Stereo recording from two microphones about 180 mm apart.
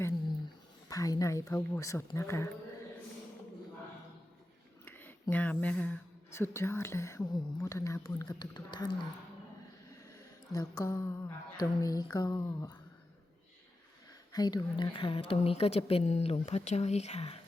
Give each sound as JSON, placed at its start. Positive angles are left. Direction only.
{"t": 0.9, "sound": "speech", "side_deg": 20}
{"t": 4.9, "sound": "speech", "side_deg": 10}
{"t": 10.2, "sound": "speech", "side_deg": 20}
{"t": 14.3, "sound": "a woman's voice", "side_deg": 20}